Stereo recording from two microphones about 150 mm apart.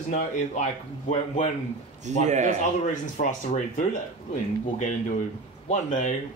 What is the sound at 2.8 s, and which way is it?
Speech, 55° left (ahead or behind).